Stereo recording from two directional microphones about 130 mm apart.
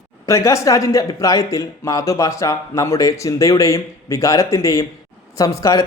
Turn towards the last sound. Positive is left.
turn(degrees=25)  # may be behind; listen again after turning